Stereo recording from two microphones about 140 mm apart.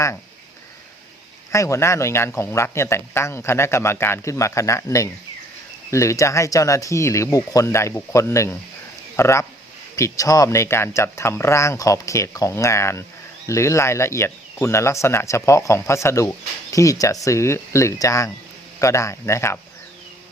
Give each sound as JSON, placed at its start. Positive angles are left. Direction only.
{"t": 1.5, "sound": "speech", "side_deg": 20}